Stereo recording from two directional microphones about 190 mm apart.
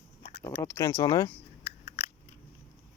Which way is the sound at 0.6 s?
15° left (ahead or behind).